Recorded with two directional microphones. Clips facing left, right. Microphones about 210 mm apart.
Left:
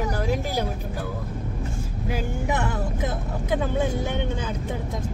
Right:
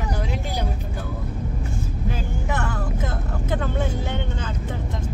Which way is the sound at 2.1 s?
20° left (ahead or behind).